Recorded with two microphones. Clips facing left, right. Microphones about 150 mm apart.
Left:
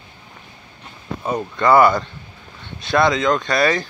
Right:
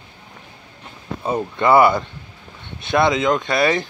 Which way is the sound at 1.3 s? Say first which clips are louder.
Even; 25° right (ahead or behind).